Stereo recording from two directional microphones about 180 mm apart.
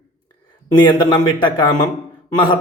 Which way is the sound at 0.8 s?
25° left (ahead or behind).